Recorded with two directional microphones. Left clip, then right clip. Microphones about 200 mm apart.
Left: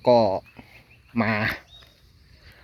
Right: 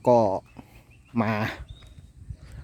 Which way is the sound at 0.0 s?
30° right (ahead or behind).